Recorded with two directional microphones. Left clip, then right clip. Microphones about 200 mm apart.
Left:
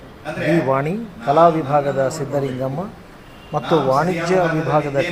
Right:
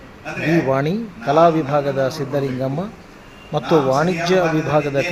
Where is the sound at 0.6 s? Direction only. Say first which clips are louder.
Even; 20° right (ahead or behind).